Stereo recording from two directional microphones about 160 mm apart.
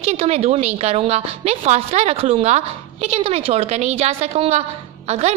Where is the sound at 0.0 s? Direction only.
40° right (ahead or behind).